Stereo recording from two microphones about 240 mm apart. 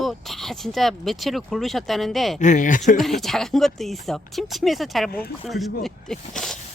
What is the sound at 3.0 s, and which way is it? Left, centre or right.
Speech, centre.